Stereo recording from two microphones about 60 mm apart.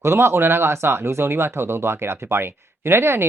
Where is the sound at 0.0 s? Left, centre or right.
Right.